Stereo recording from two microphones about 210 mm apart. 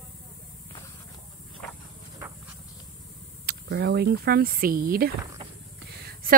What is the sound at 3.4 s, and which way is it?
A woman's voice, 55° right (ahead or behind).